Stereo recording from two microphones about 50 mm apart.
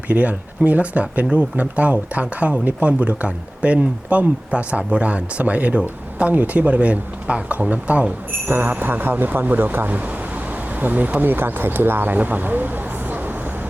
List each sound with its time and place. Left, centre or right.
0.1 s speech: right
8.4 s speech: right